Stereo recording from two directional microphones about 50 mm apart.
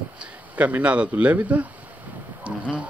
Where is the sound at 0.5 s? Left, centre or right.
Right.